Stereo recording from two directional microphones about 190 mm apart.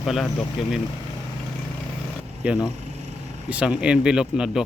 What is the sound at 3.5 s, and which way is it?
Speech, 5° right (ahead or behind).